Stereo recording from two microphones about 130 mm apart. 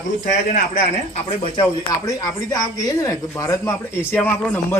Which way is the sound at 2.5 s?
25° left (ahead or behind).